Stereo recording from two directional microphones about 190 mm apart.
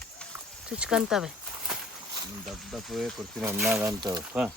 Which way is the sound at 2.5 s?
Centre (ahead or behind).